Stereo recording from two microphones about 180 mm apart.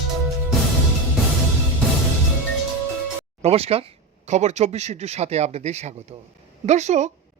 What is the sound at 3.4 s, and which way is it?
Speech, 35° right (ahead or behind).